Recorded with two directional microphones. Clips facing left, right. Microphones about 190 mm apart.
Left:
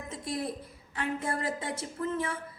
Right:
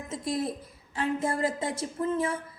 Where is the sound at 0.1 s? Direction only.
20° right (ahead or behind).